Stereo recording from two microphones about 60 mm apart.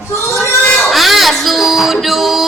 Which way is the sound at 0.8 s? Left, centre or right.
Centre.